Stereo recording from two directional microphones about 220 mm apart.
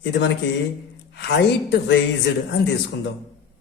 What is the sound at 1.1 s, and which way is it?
Speech, 50° left (ahead or behind).